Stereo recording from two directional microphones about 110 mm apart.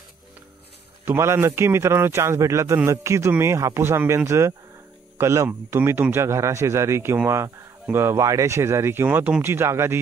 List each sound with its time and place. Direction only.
1.0 s a man's voice: 25° right (ahead or behind)